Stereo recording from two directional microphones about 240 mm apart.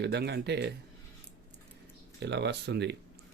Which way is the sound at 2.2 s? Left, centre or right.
Right.